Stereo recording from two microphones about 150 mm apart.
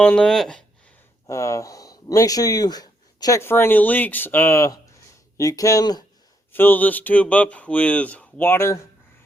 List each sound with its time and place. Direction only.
0.0 s speech: 5° left (ahead or behind)
1.3 s speech: 20° left (ahead or behind)
6.5 s speech: 15° left (ahead or behind)